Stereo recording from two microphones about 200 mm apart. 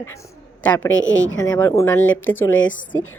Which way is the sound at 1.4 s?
15° left (ahead or behind).